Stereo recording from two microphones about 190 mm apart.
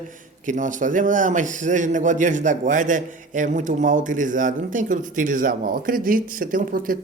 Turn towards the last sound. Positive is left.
turn(degrees=-45)  # may be behind; listen again after turning